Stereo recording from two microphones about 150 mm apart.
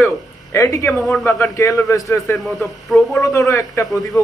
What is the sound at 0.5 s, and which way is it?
Speech, 20° left (ahead or behind).